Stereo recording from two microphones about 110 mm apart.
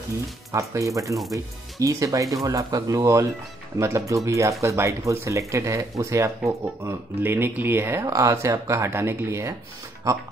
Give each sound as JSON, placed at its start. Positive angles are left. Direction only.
{"t": 0.5, "sound": "speech", "side_deg": -30}